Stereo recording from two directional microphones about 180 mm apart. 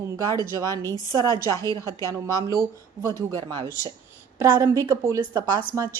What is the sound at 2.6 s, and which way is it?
Speech, 15° right (ahead or behind).